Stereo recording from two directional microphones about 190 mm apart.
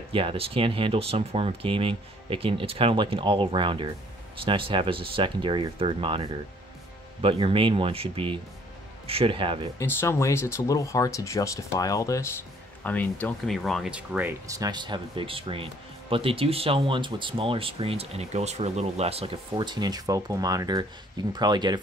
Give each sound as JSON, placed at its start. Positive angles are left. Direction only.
{"t": 0.1, "sound": "speech", "side_deg": -30}
{"t": 9.8, "sound": "speech", "side_deg": 15}